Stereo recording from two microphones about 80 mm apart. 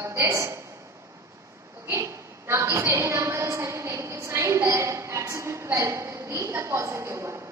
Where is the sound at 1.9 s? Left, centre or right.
Right.